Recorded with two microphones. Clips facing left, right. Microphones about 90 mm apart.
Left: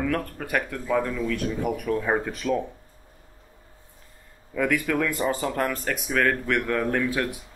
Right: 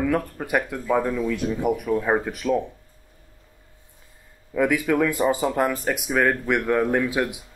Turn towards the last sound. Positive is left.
turn(degrees=-15)  # may be behind; listen again after turning